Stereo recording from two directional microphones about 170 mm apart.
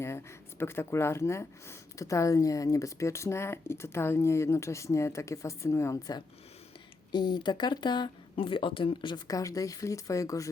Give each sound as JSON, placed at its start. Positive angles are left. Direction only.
{"t": 0.6, "sound": "speech", "side_deg": 15}